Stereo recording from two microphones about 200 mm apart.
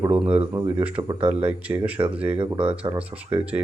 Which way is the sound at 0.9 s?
30° right (ahead or behind).